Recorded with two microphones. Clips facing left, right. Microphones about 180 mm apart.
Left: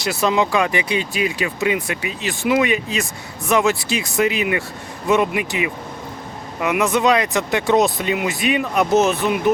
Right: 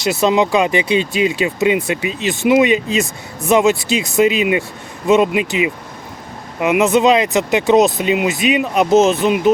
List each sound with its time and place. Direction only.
0.0 s speech: 25° right (ahead or behind)